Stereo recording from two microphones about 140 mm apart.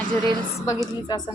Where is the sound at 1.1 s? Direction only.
30° left (ahead or behind).